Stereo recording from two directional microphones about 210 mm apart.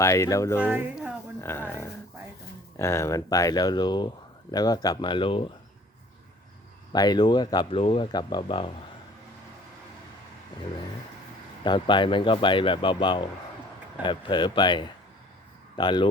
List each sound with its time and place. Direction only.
0.0 s speech: 15° left (ahead or behind)
0.6 s speech: 10° right (ahead or behind)
1.4 s speech: 10° left (ahead or behind)
6.9 s speech: 20° left (ahead or behind)
11.6 s speech: 20° left (ahead or behind)